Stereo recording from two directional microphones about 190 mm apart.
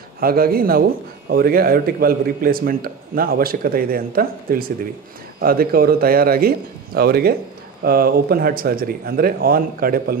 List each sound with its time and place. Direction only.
0.2 s a man's voice: 50° right (ahead or behind)